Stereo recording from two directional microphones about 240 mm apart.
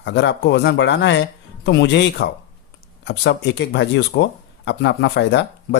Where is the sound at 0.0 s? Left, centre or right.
Left.